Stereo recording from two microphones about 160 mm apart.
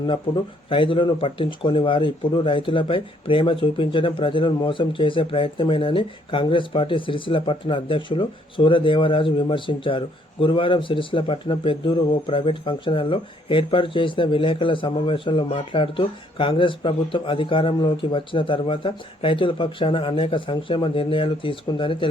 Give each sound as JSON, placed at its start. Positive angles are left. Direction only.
{"t": 0.7, "sound": "speech", "side_deg": 35}